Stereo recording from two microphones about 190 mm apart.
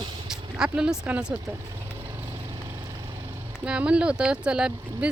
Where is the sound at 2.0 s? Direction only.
15° right (ahead or behind).